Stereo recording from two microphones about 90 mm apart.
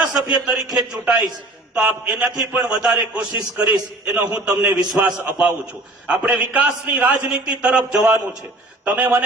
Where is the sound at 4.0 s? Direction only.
15° right (ahead or behind).